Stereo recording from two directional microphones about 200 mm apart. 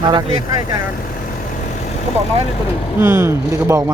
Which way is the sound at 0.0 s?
20° right (ahead or behind).